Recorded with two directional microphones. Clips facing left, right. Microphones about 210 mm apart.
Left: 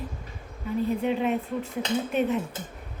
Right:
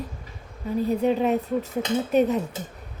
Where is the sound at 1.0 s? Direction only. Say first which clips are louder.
Right 4 dB; 40° right (ahead or behind).